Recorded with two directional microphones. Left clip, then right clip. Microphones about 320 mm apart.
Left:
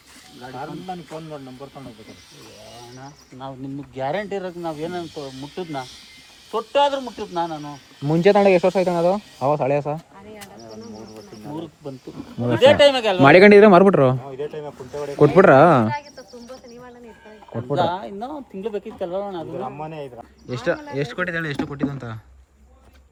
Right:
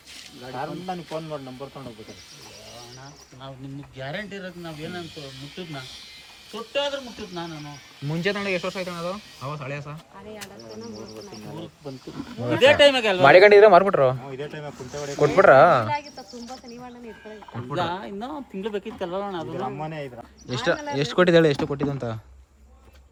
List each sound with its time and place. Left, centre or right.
0.5 s speech: centre
3.9 s speech: centre
6.7 s speech: centre
12.5 s speech: centre
13.2 s a man's voice: left
14.3 s speech: right
15.4 s a man's voice: centre
16.0 s cricket: centre
17.7 s speech: centre
19.8 s speech: right
20.5 s speech: centre